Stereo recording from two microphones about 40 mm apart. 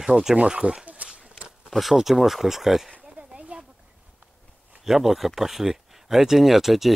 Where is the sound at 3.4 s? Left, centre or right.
Right.